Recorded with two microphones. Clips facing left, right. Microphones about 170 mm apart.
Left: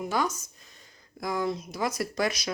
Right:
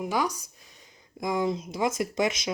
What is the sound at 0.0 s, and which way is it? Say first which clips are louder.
Speech: right 1 dB; 15° right (ahead or behind).